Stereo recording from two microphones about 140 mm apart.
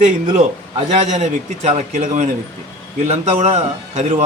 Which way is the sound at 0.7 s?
50° right (ahead or behind).